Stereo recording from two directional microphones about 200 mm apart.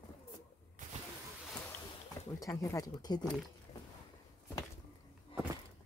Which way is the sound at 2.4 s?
15° left (ahead or behind).